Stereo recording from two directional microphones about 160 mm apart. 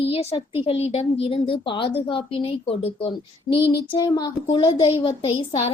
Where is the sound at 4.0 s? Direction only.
25° left (ahead or behind).